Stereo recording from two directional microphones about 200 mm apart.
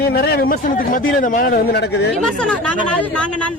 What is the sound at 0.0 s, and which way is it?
A man's voice, 50° left (ahead or behind).